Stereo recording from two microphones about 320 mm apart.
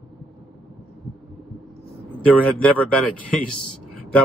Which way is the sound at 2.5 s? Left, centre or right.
Centre.